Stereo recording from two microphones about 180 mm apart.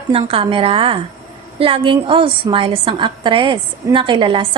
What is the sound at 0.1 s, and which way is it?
A woman's voice, 30° right (ahead or behind).